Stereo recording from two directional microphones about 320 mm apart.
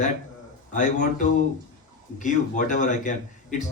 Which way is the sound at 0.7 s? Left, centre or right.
Left.